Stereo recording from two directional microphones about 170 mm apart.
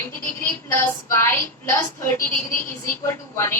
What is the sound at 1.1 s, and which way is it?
A woman's voice, 15° left (ahead or behind).